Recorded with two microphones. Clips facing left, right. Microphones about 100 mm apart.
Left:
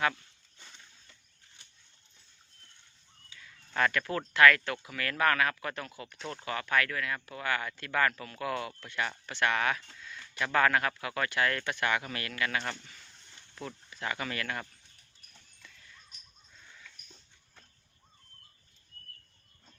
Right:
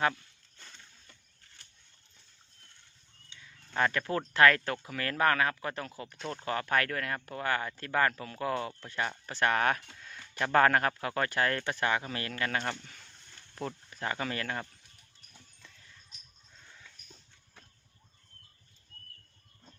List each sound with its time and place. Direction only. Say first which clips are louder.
3.8 s speech: even; 25° right (ahead or behind)